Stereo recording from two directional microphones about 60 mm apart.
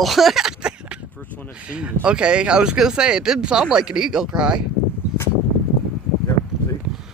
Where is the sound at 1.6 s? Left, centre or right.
Centre.